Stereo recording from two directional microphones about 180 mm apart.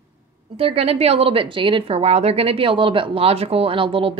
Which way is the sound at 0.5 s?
35° right (ahead or behind).